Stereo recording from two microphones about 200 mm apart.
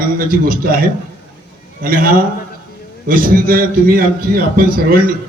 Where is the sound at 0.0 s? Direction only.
45° right (ahead or behind).